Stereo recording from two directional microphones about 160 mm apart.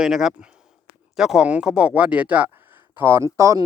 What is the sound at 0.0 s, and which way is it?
Speech, centre (ahead or behind).